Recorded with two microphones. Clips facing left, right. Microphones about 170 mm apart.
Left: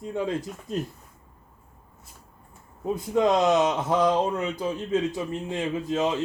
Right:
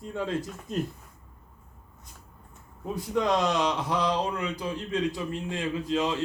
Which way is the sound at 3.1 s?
25° left (ahead or behind).